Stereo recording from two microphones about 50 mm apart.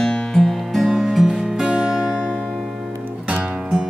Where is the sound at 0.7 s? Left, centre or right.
Centre.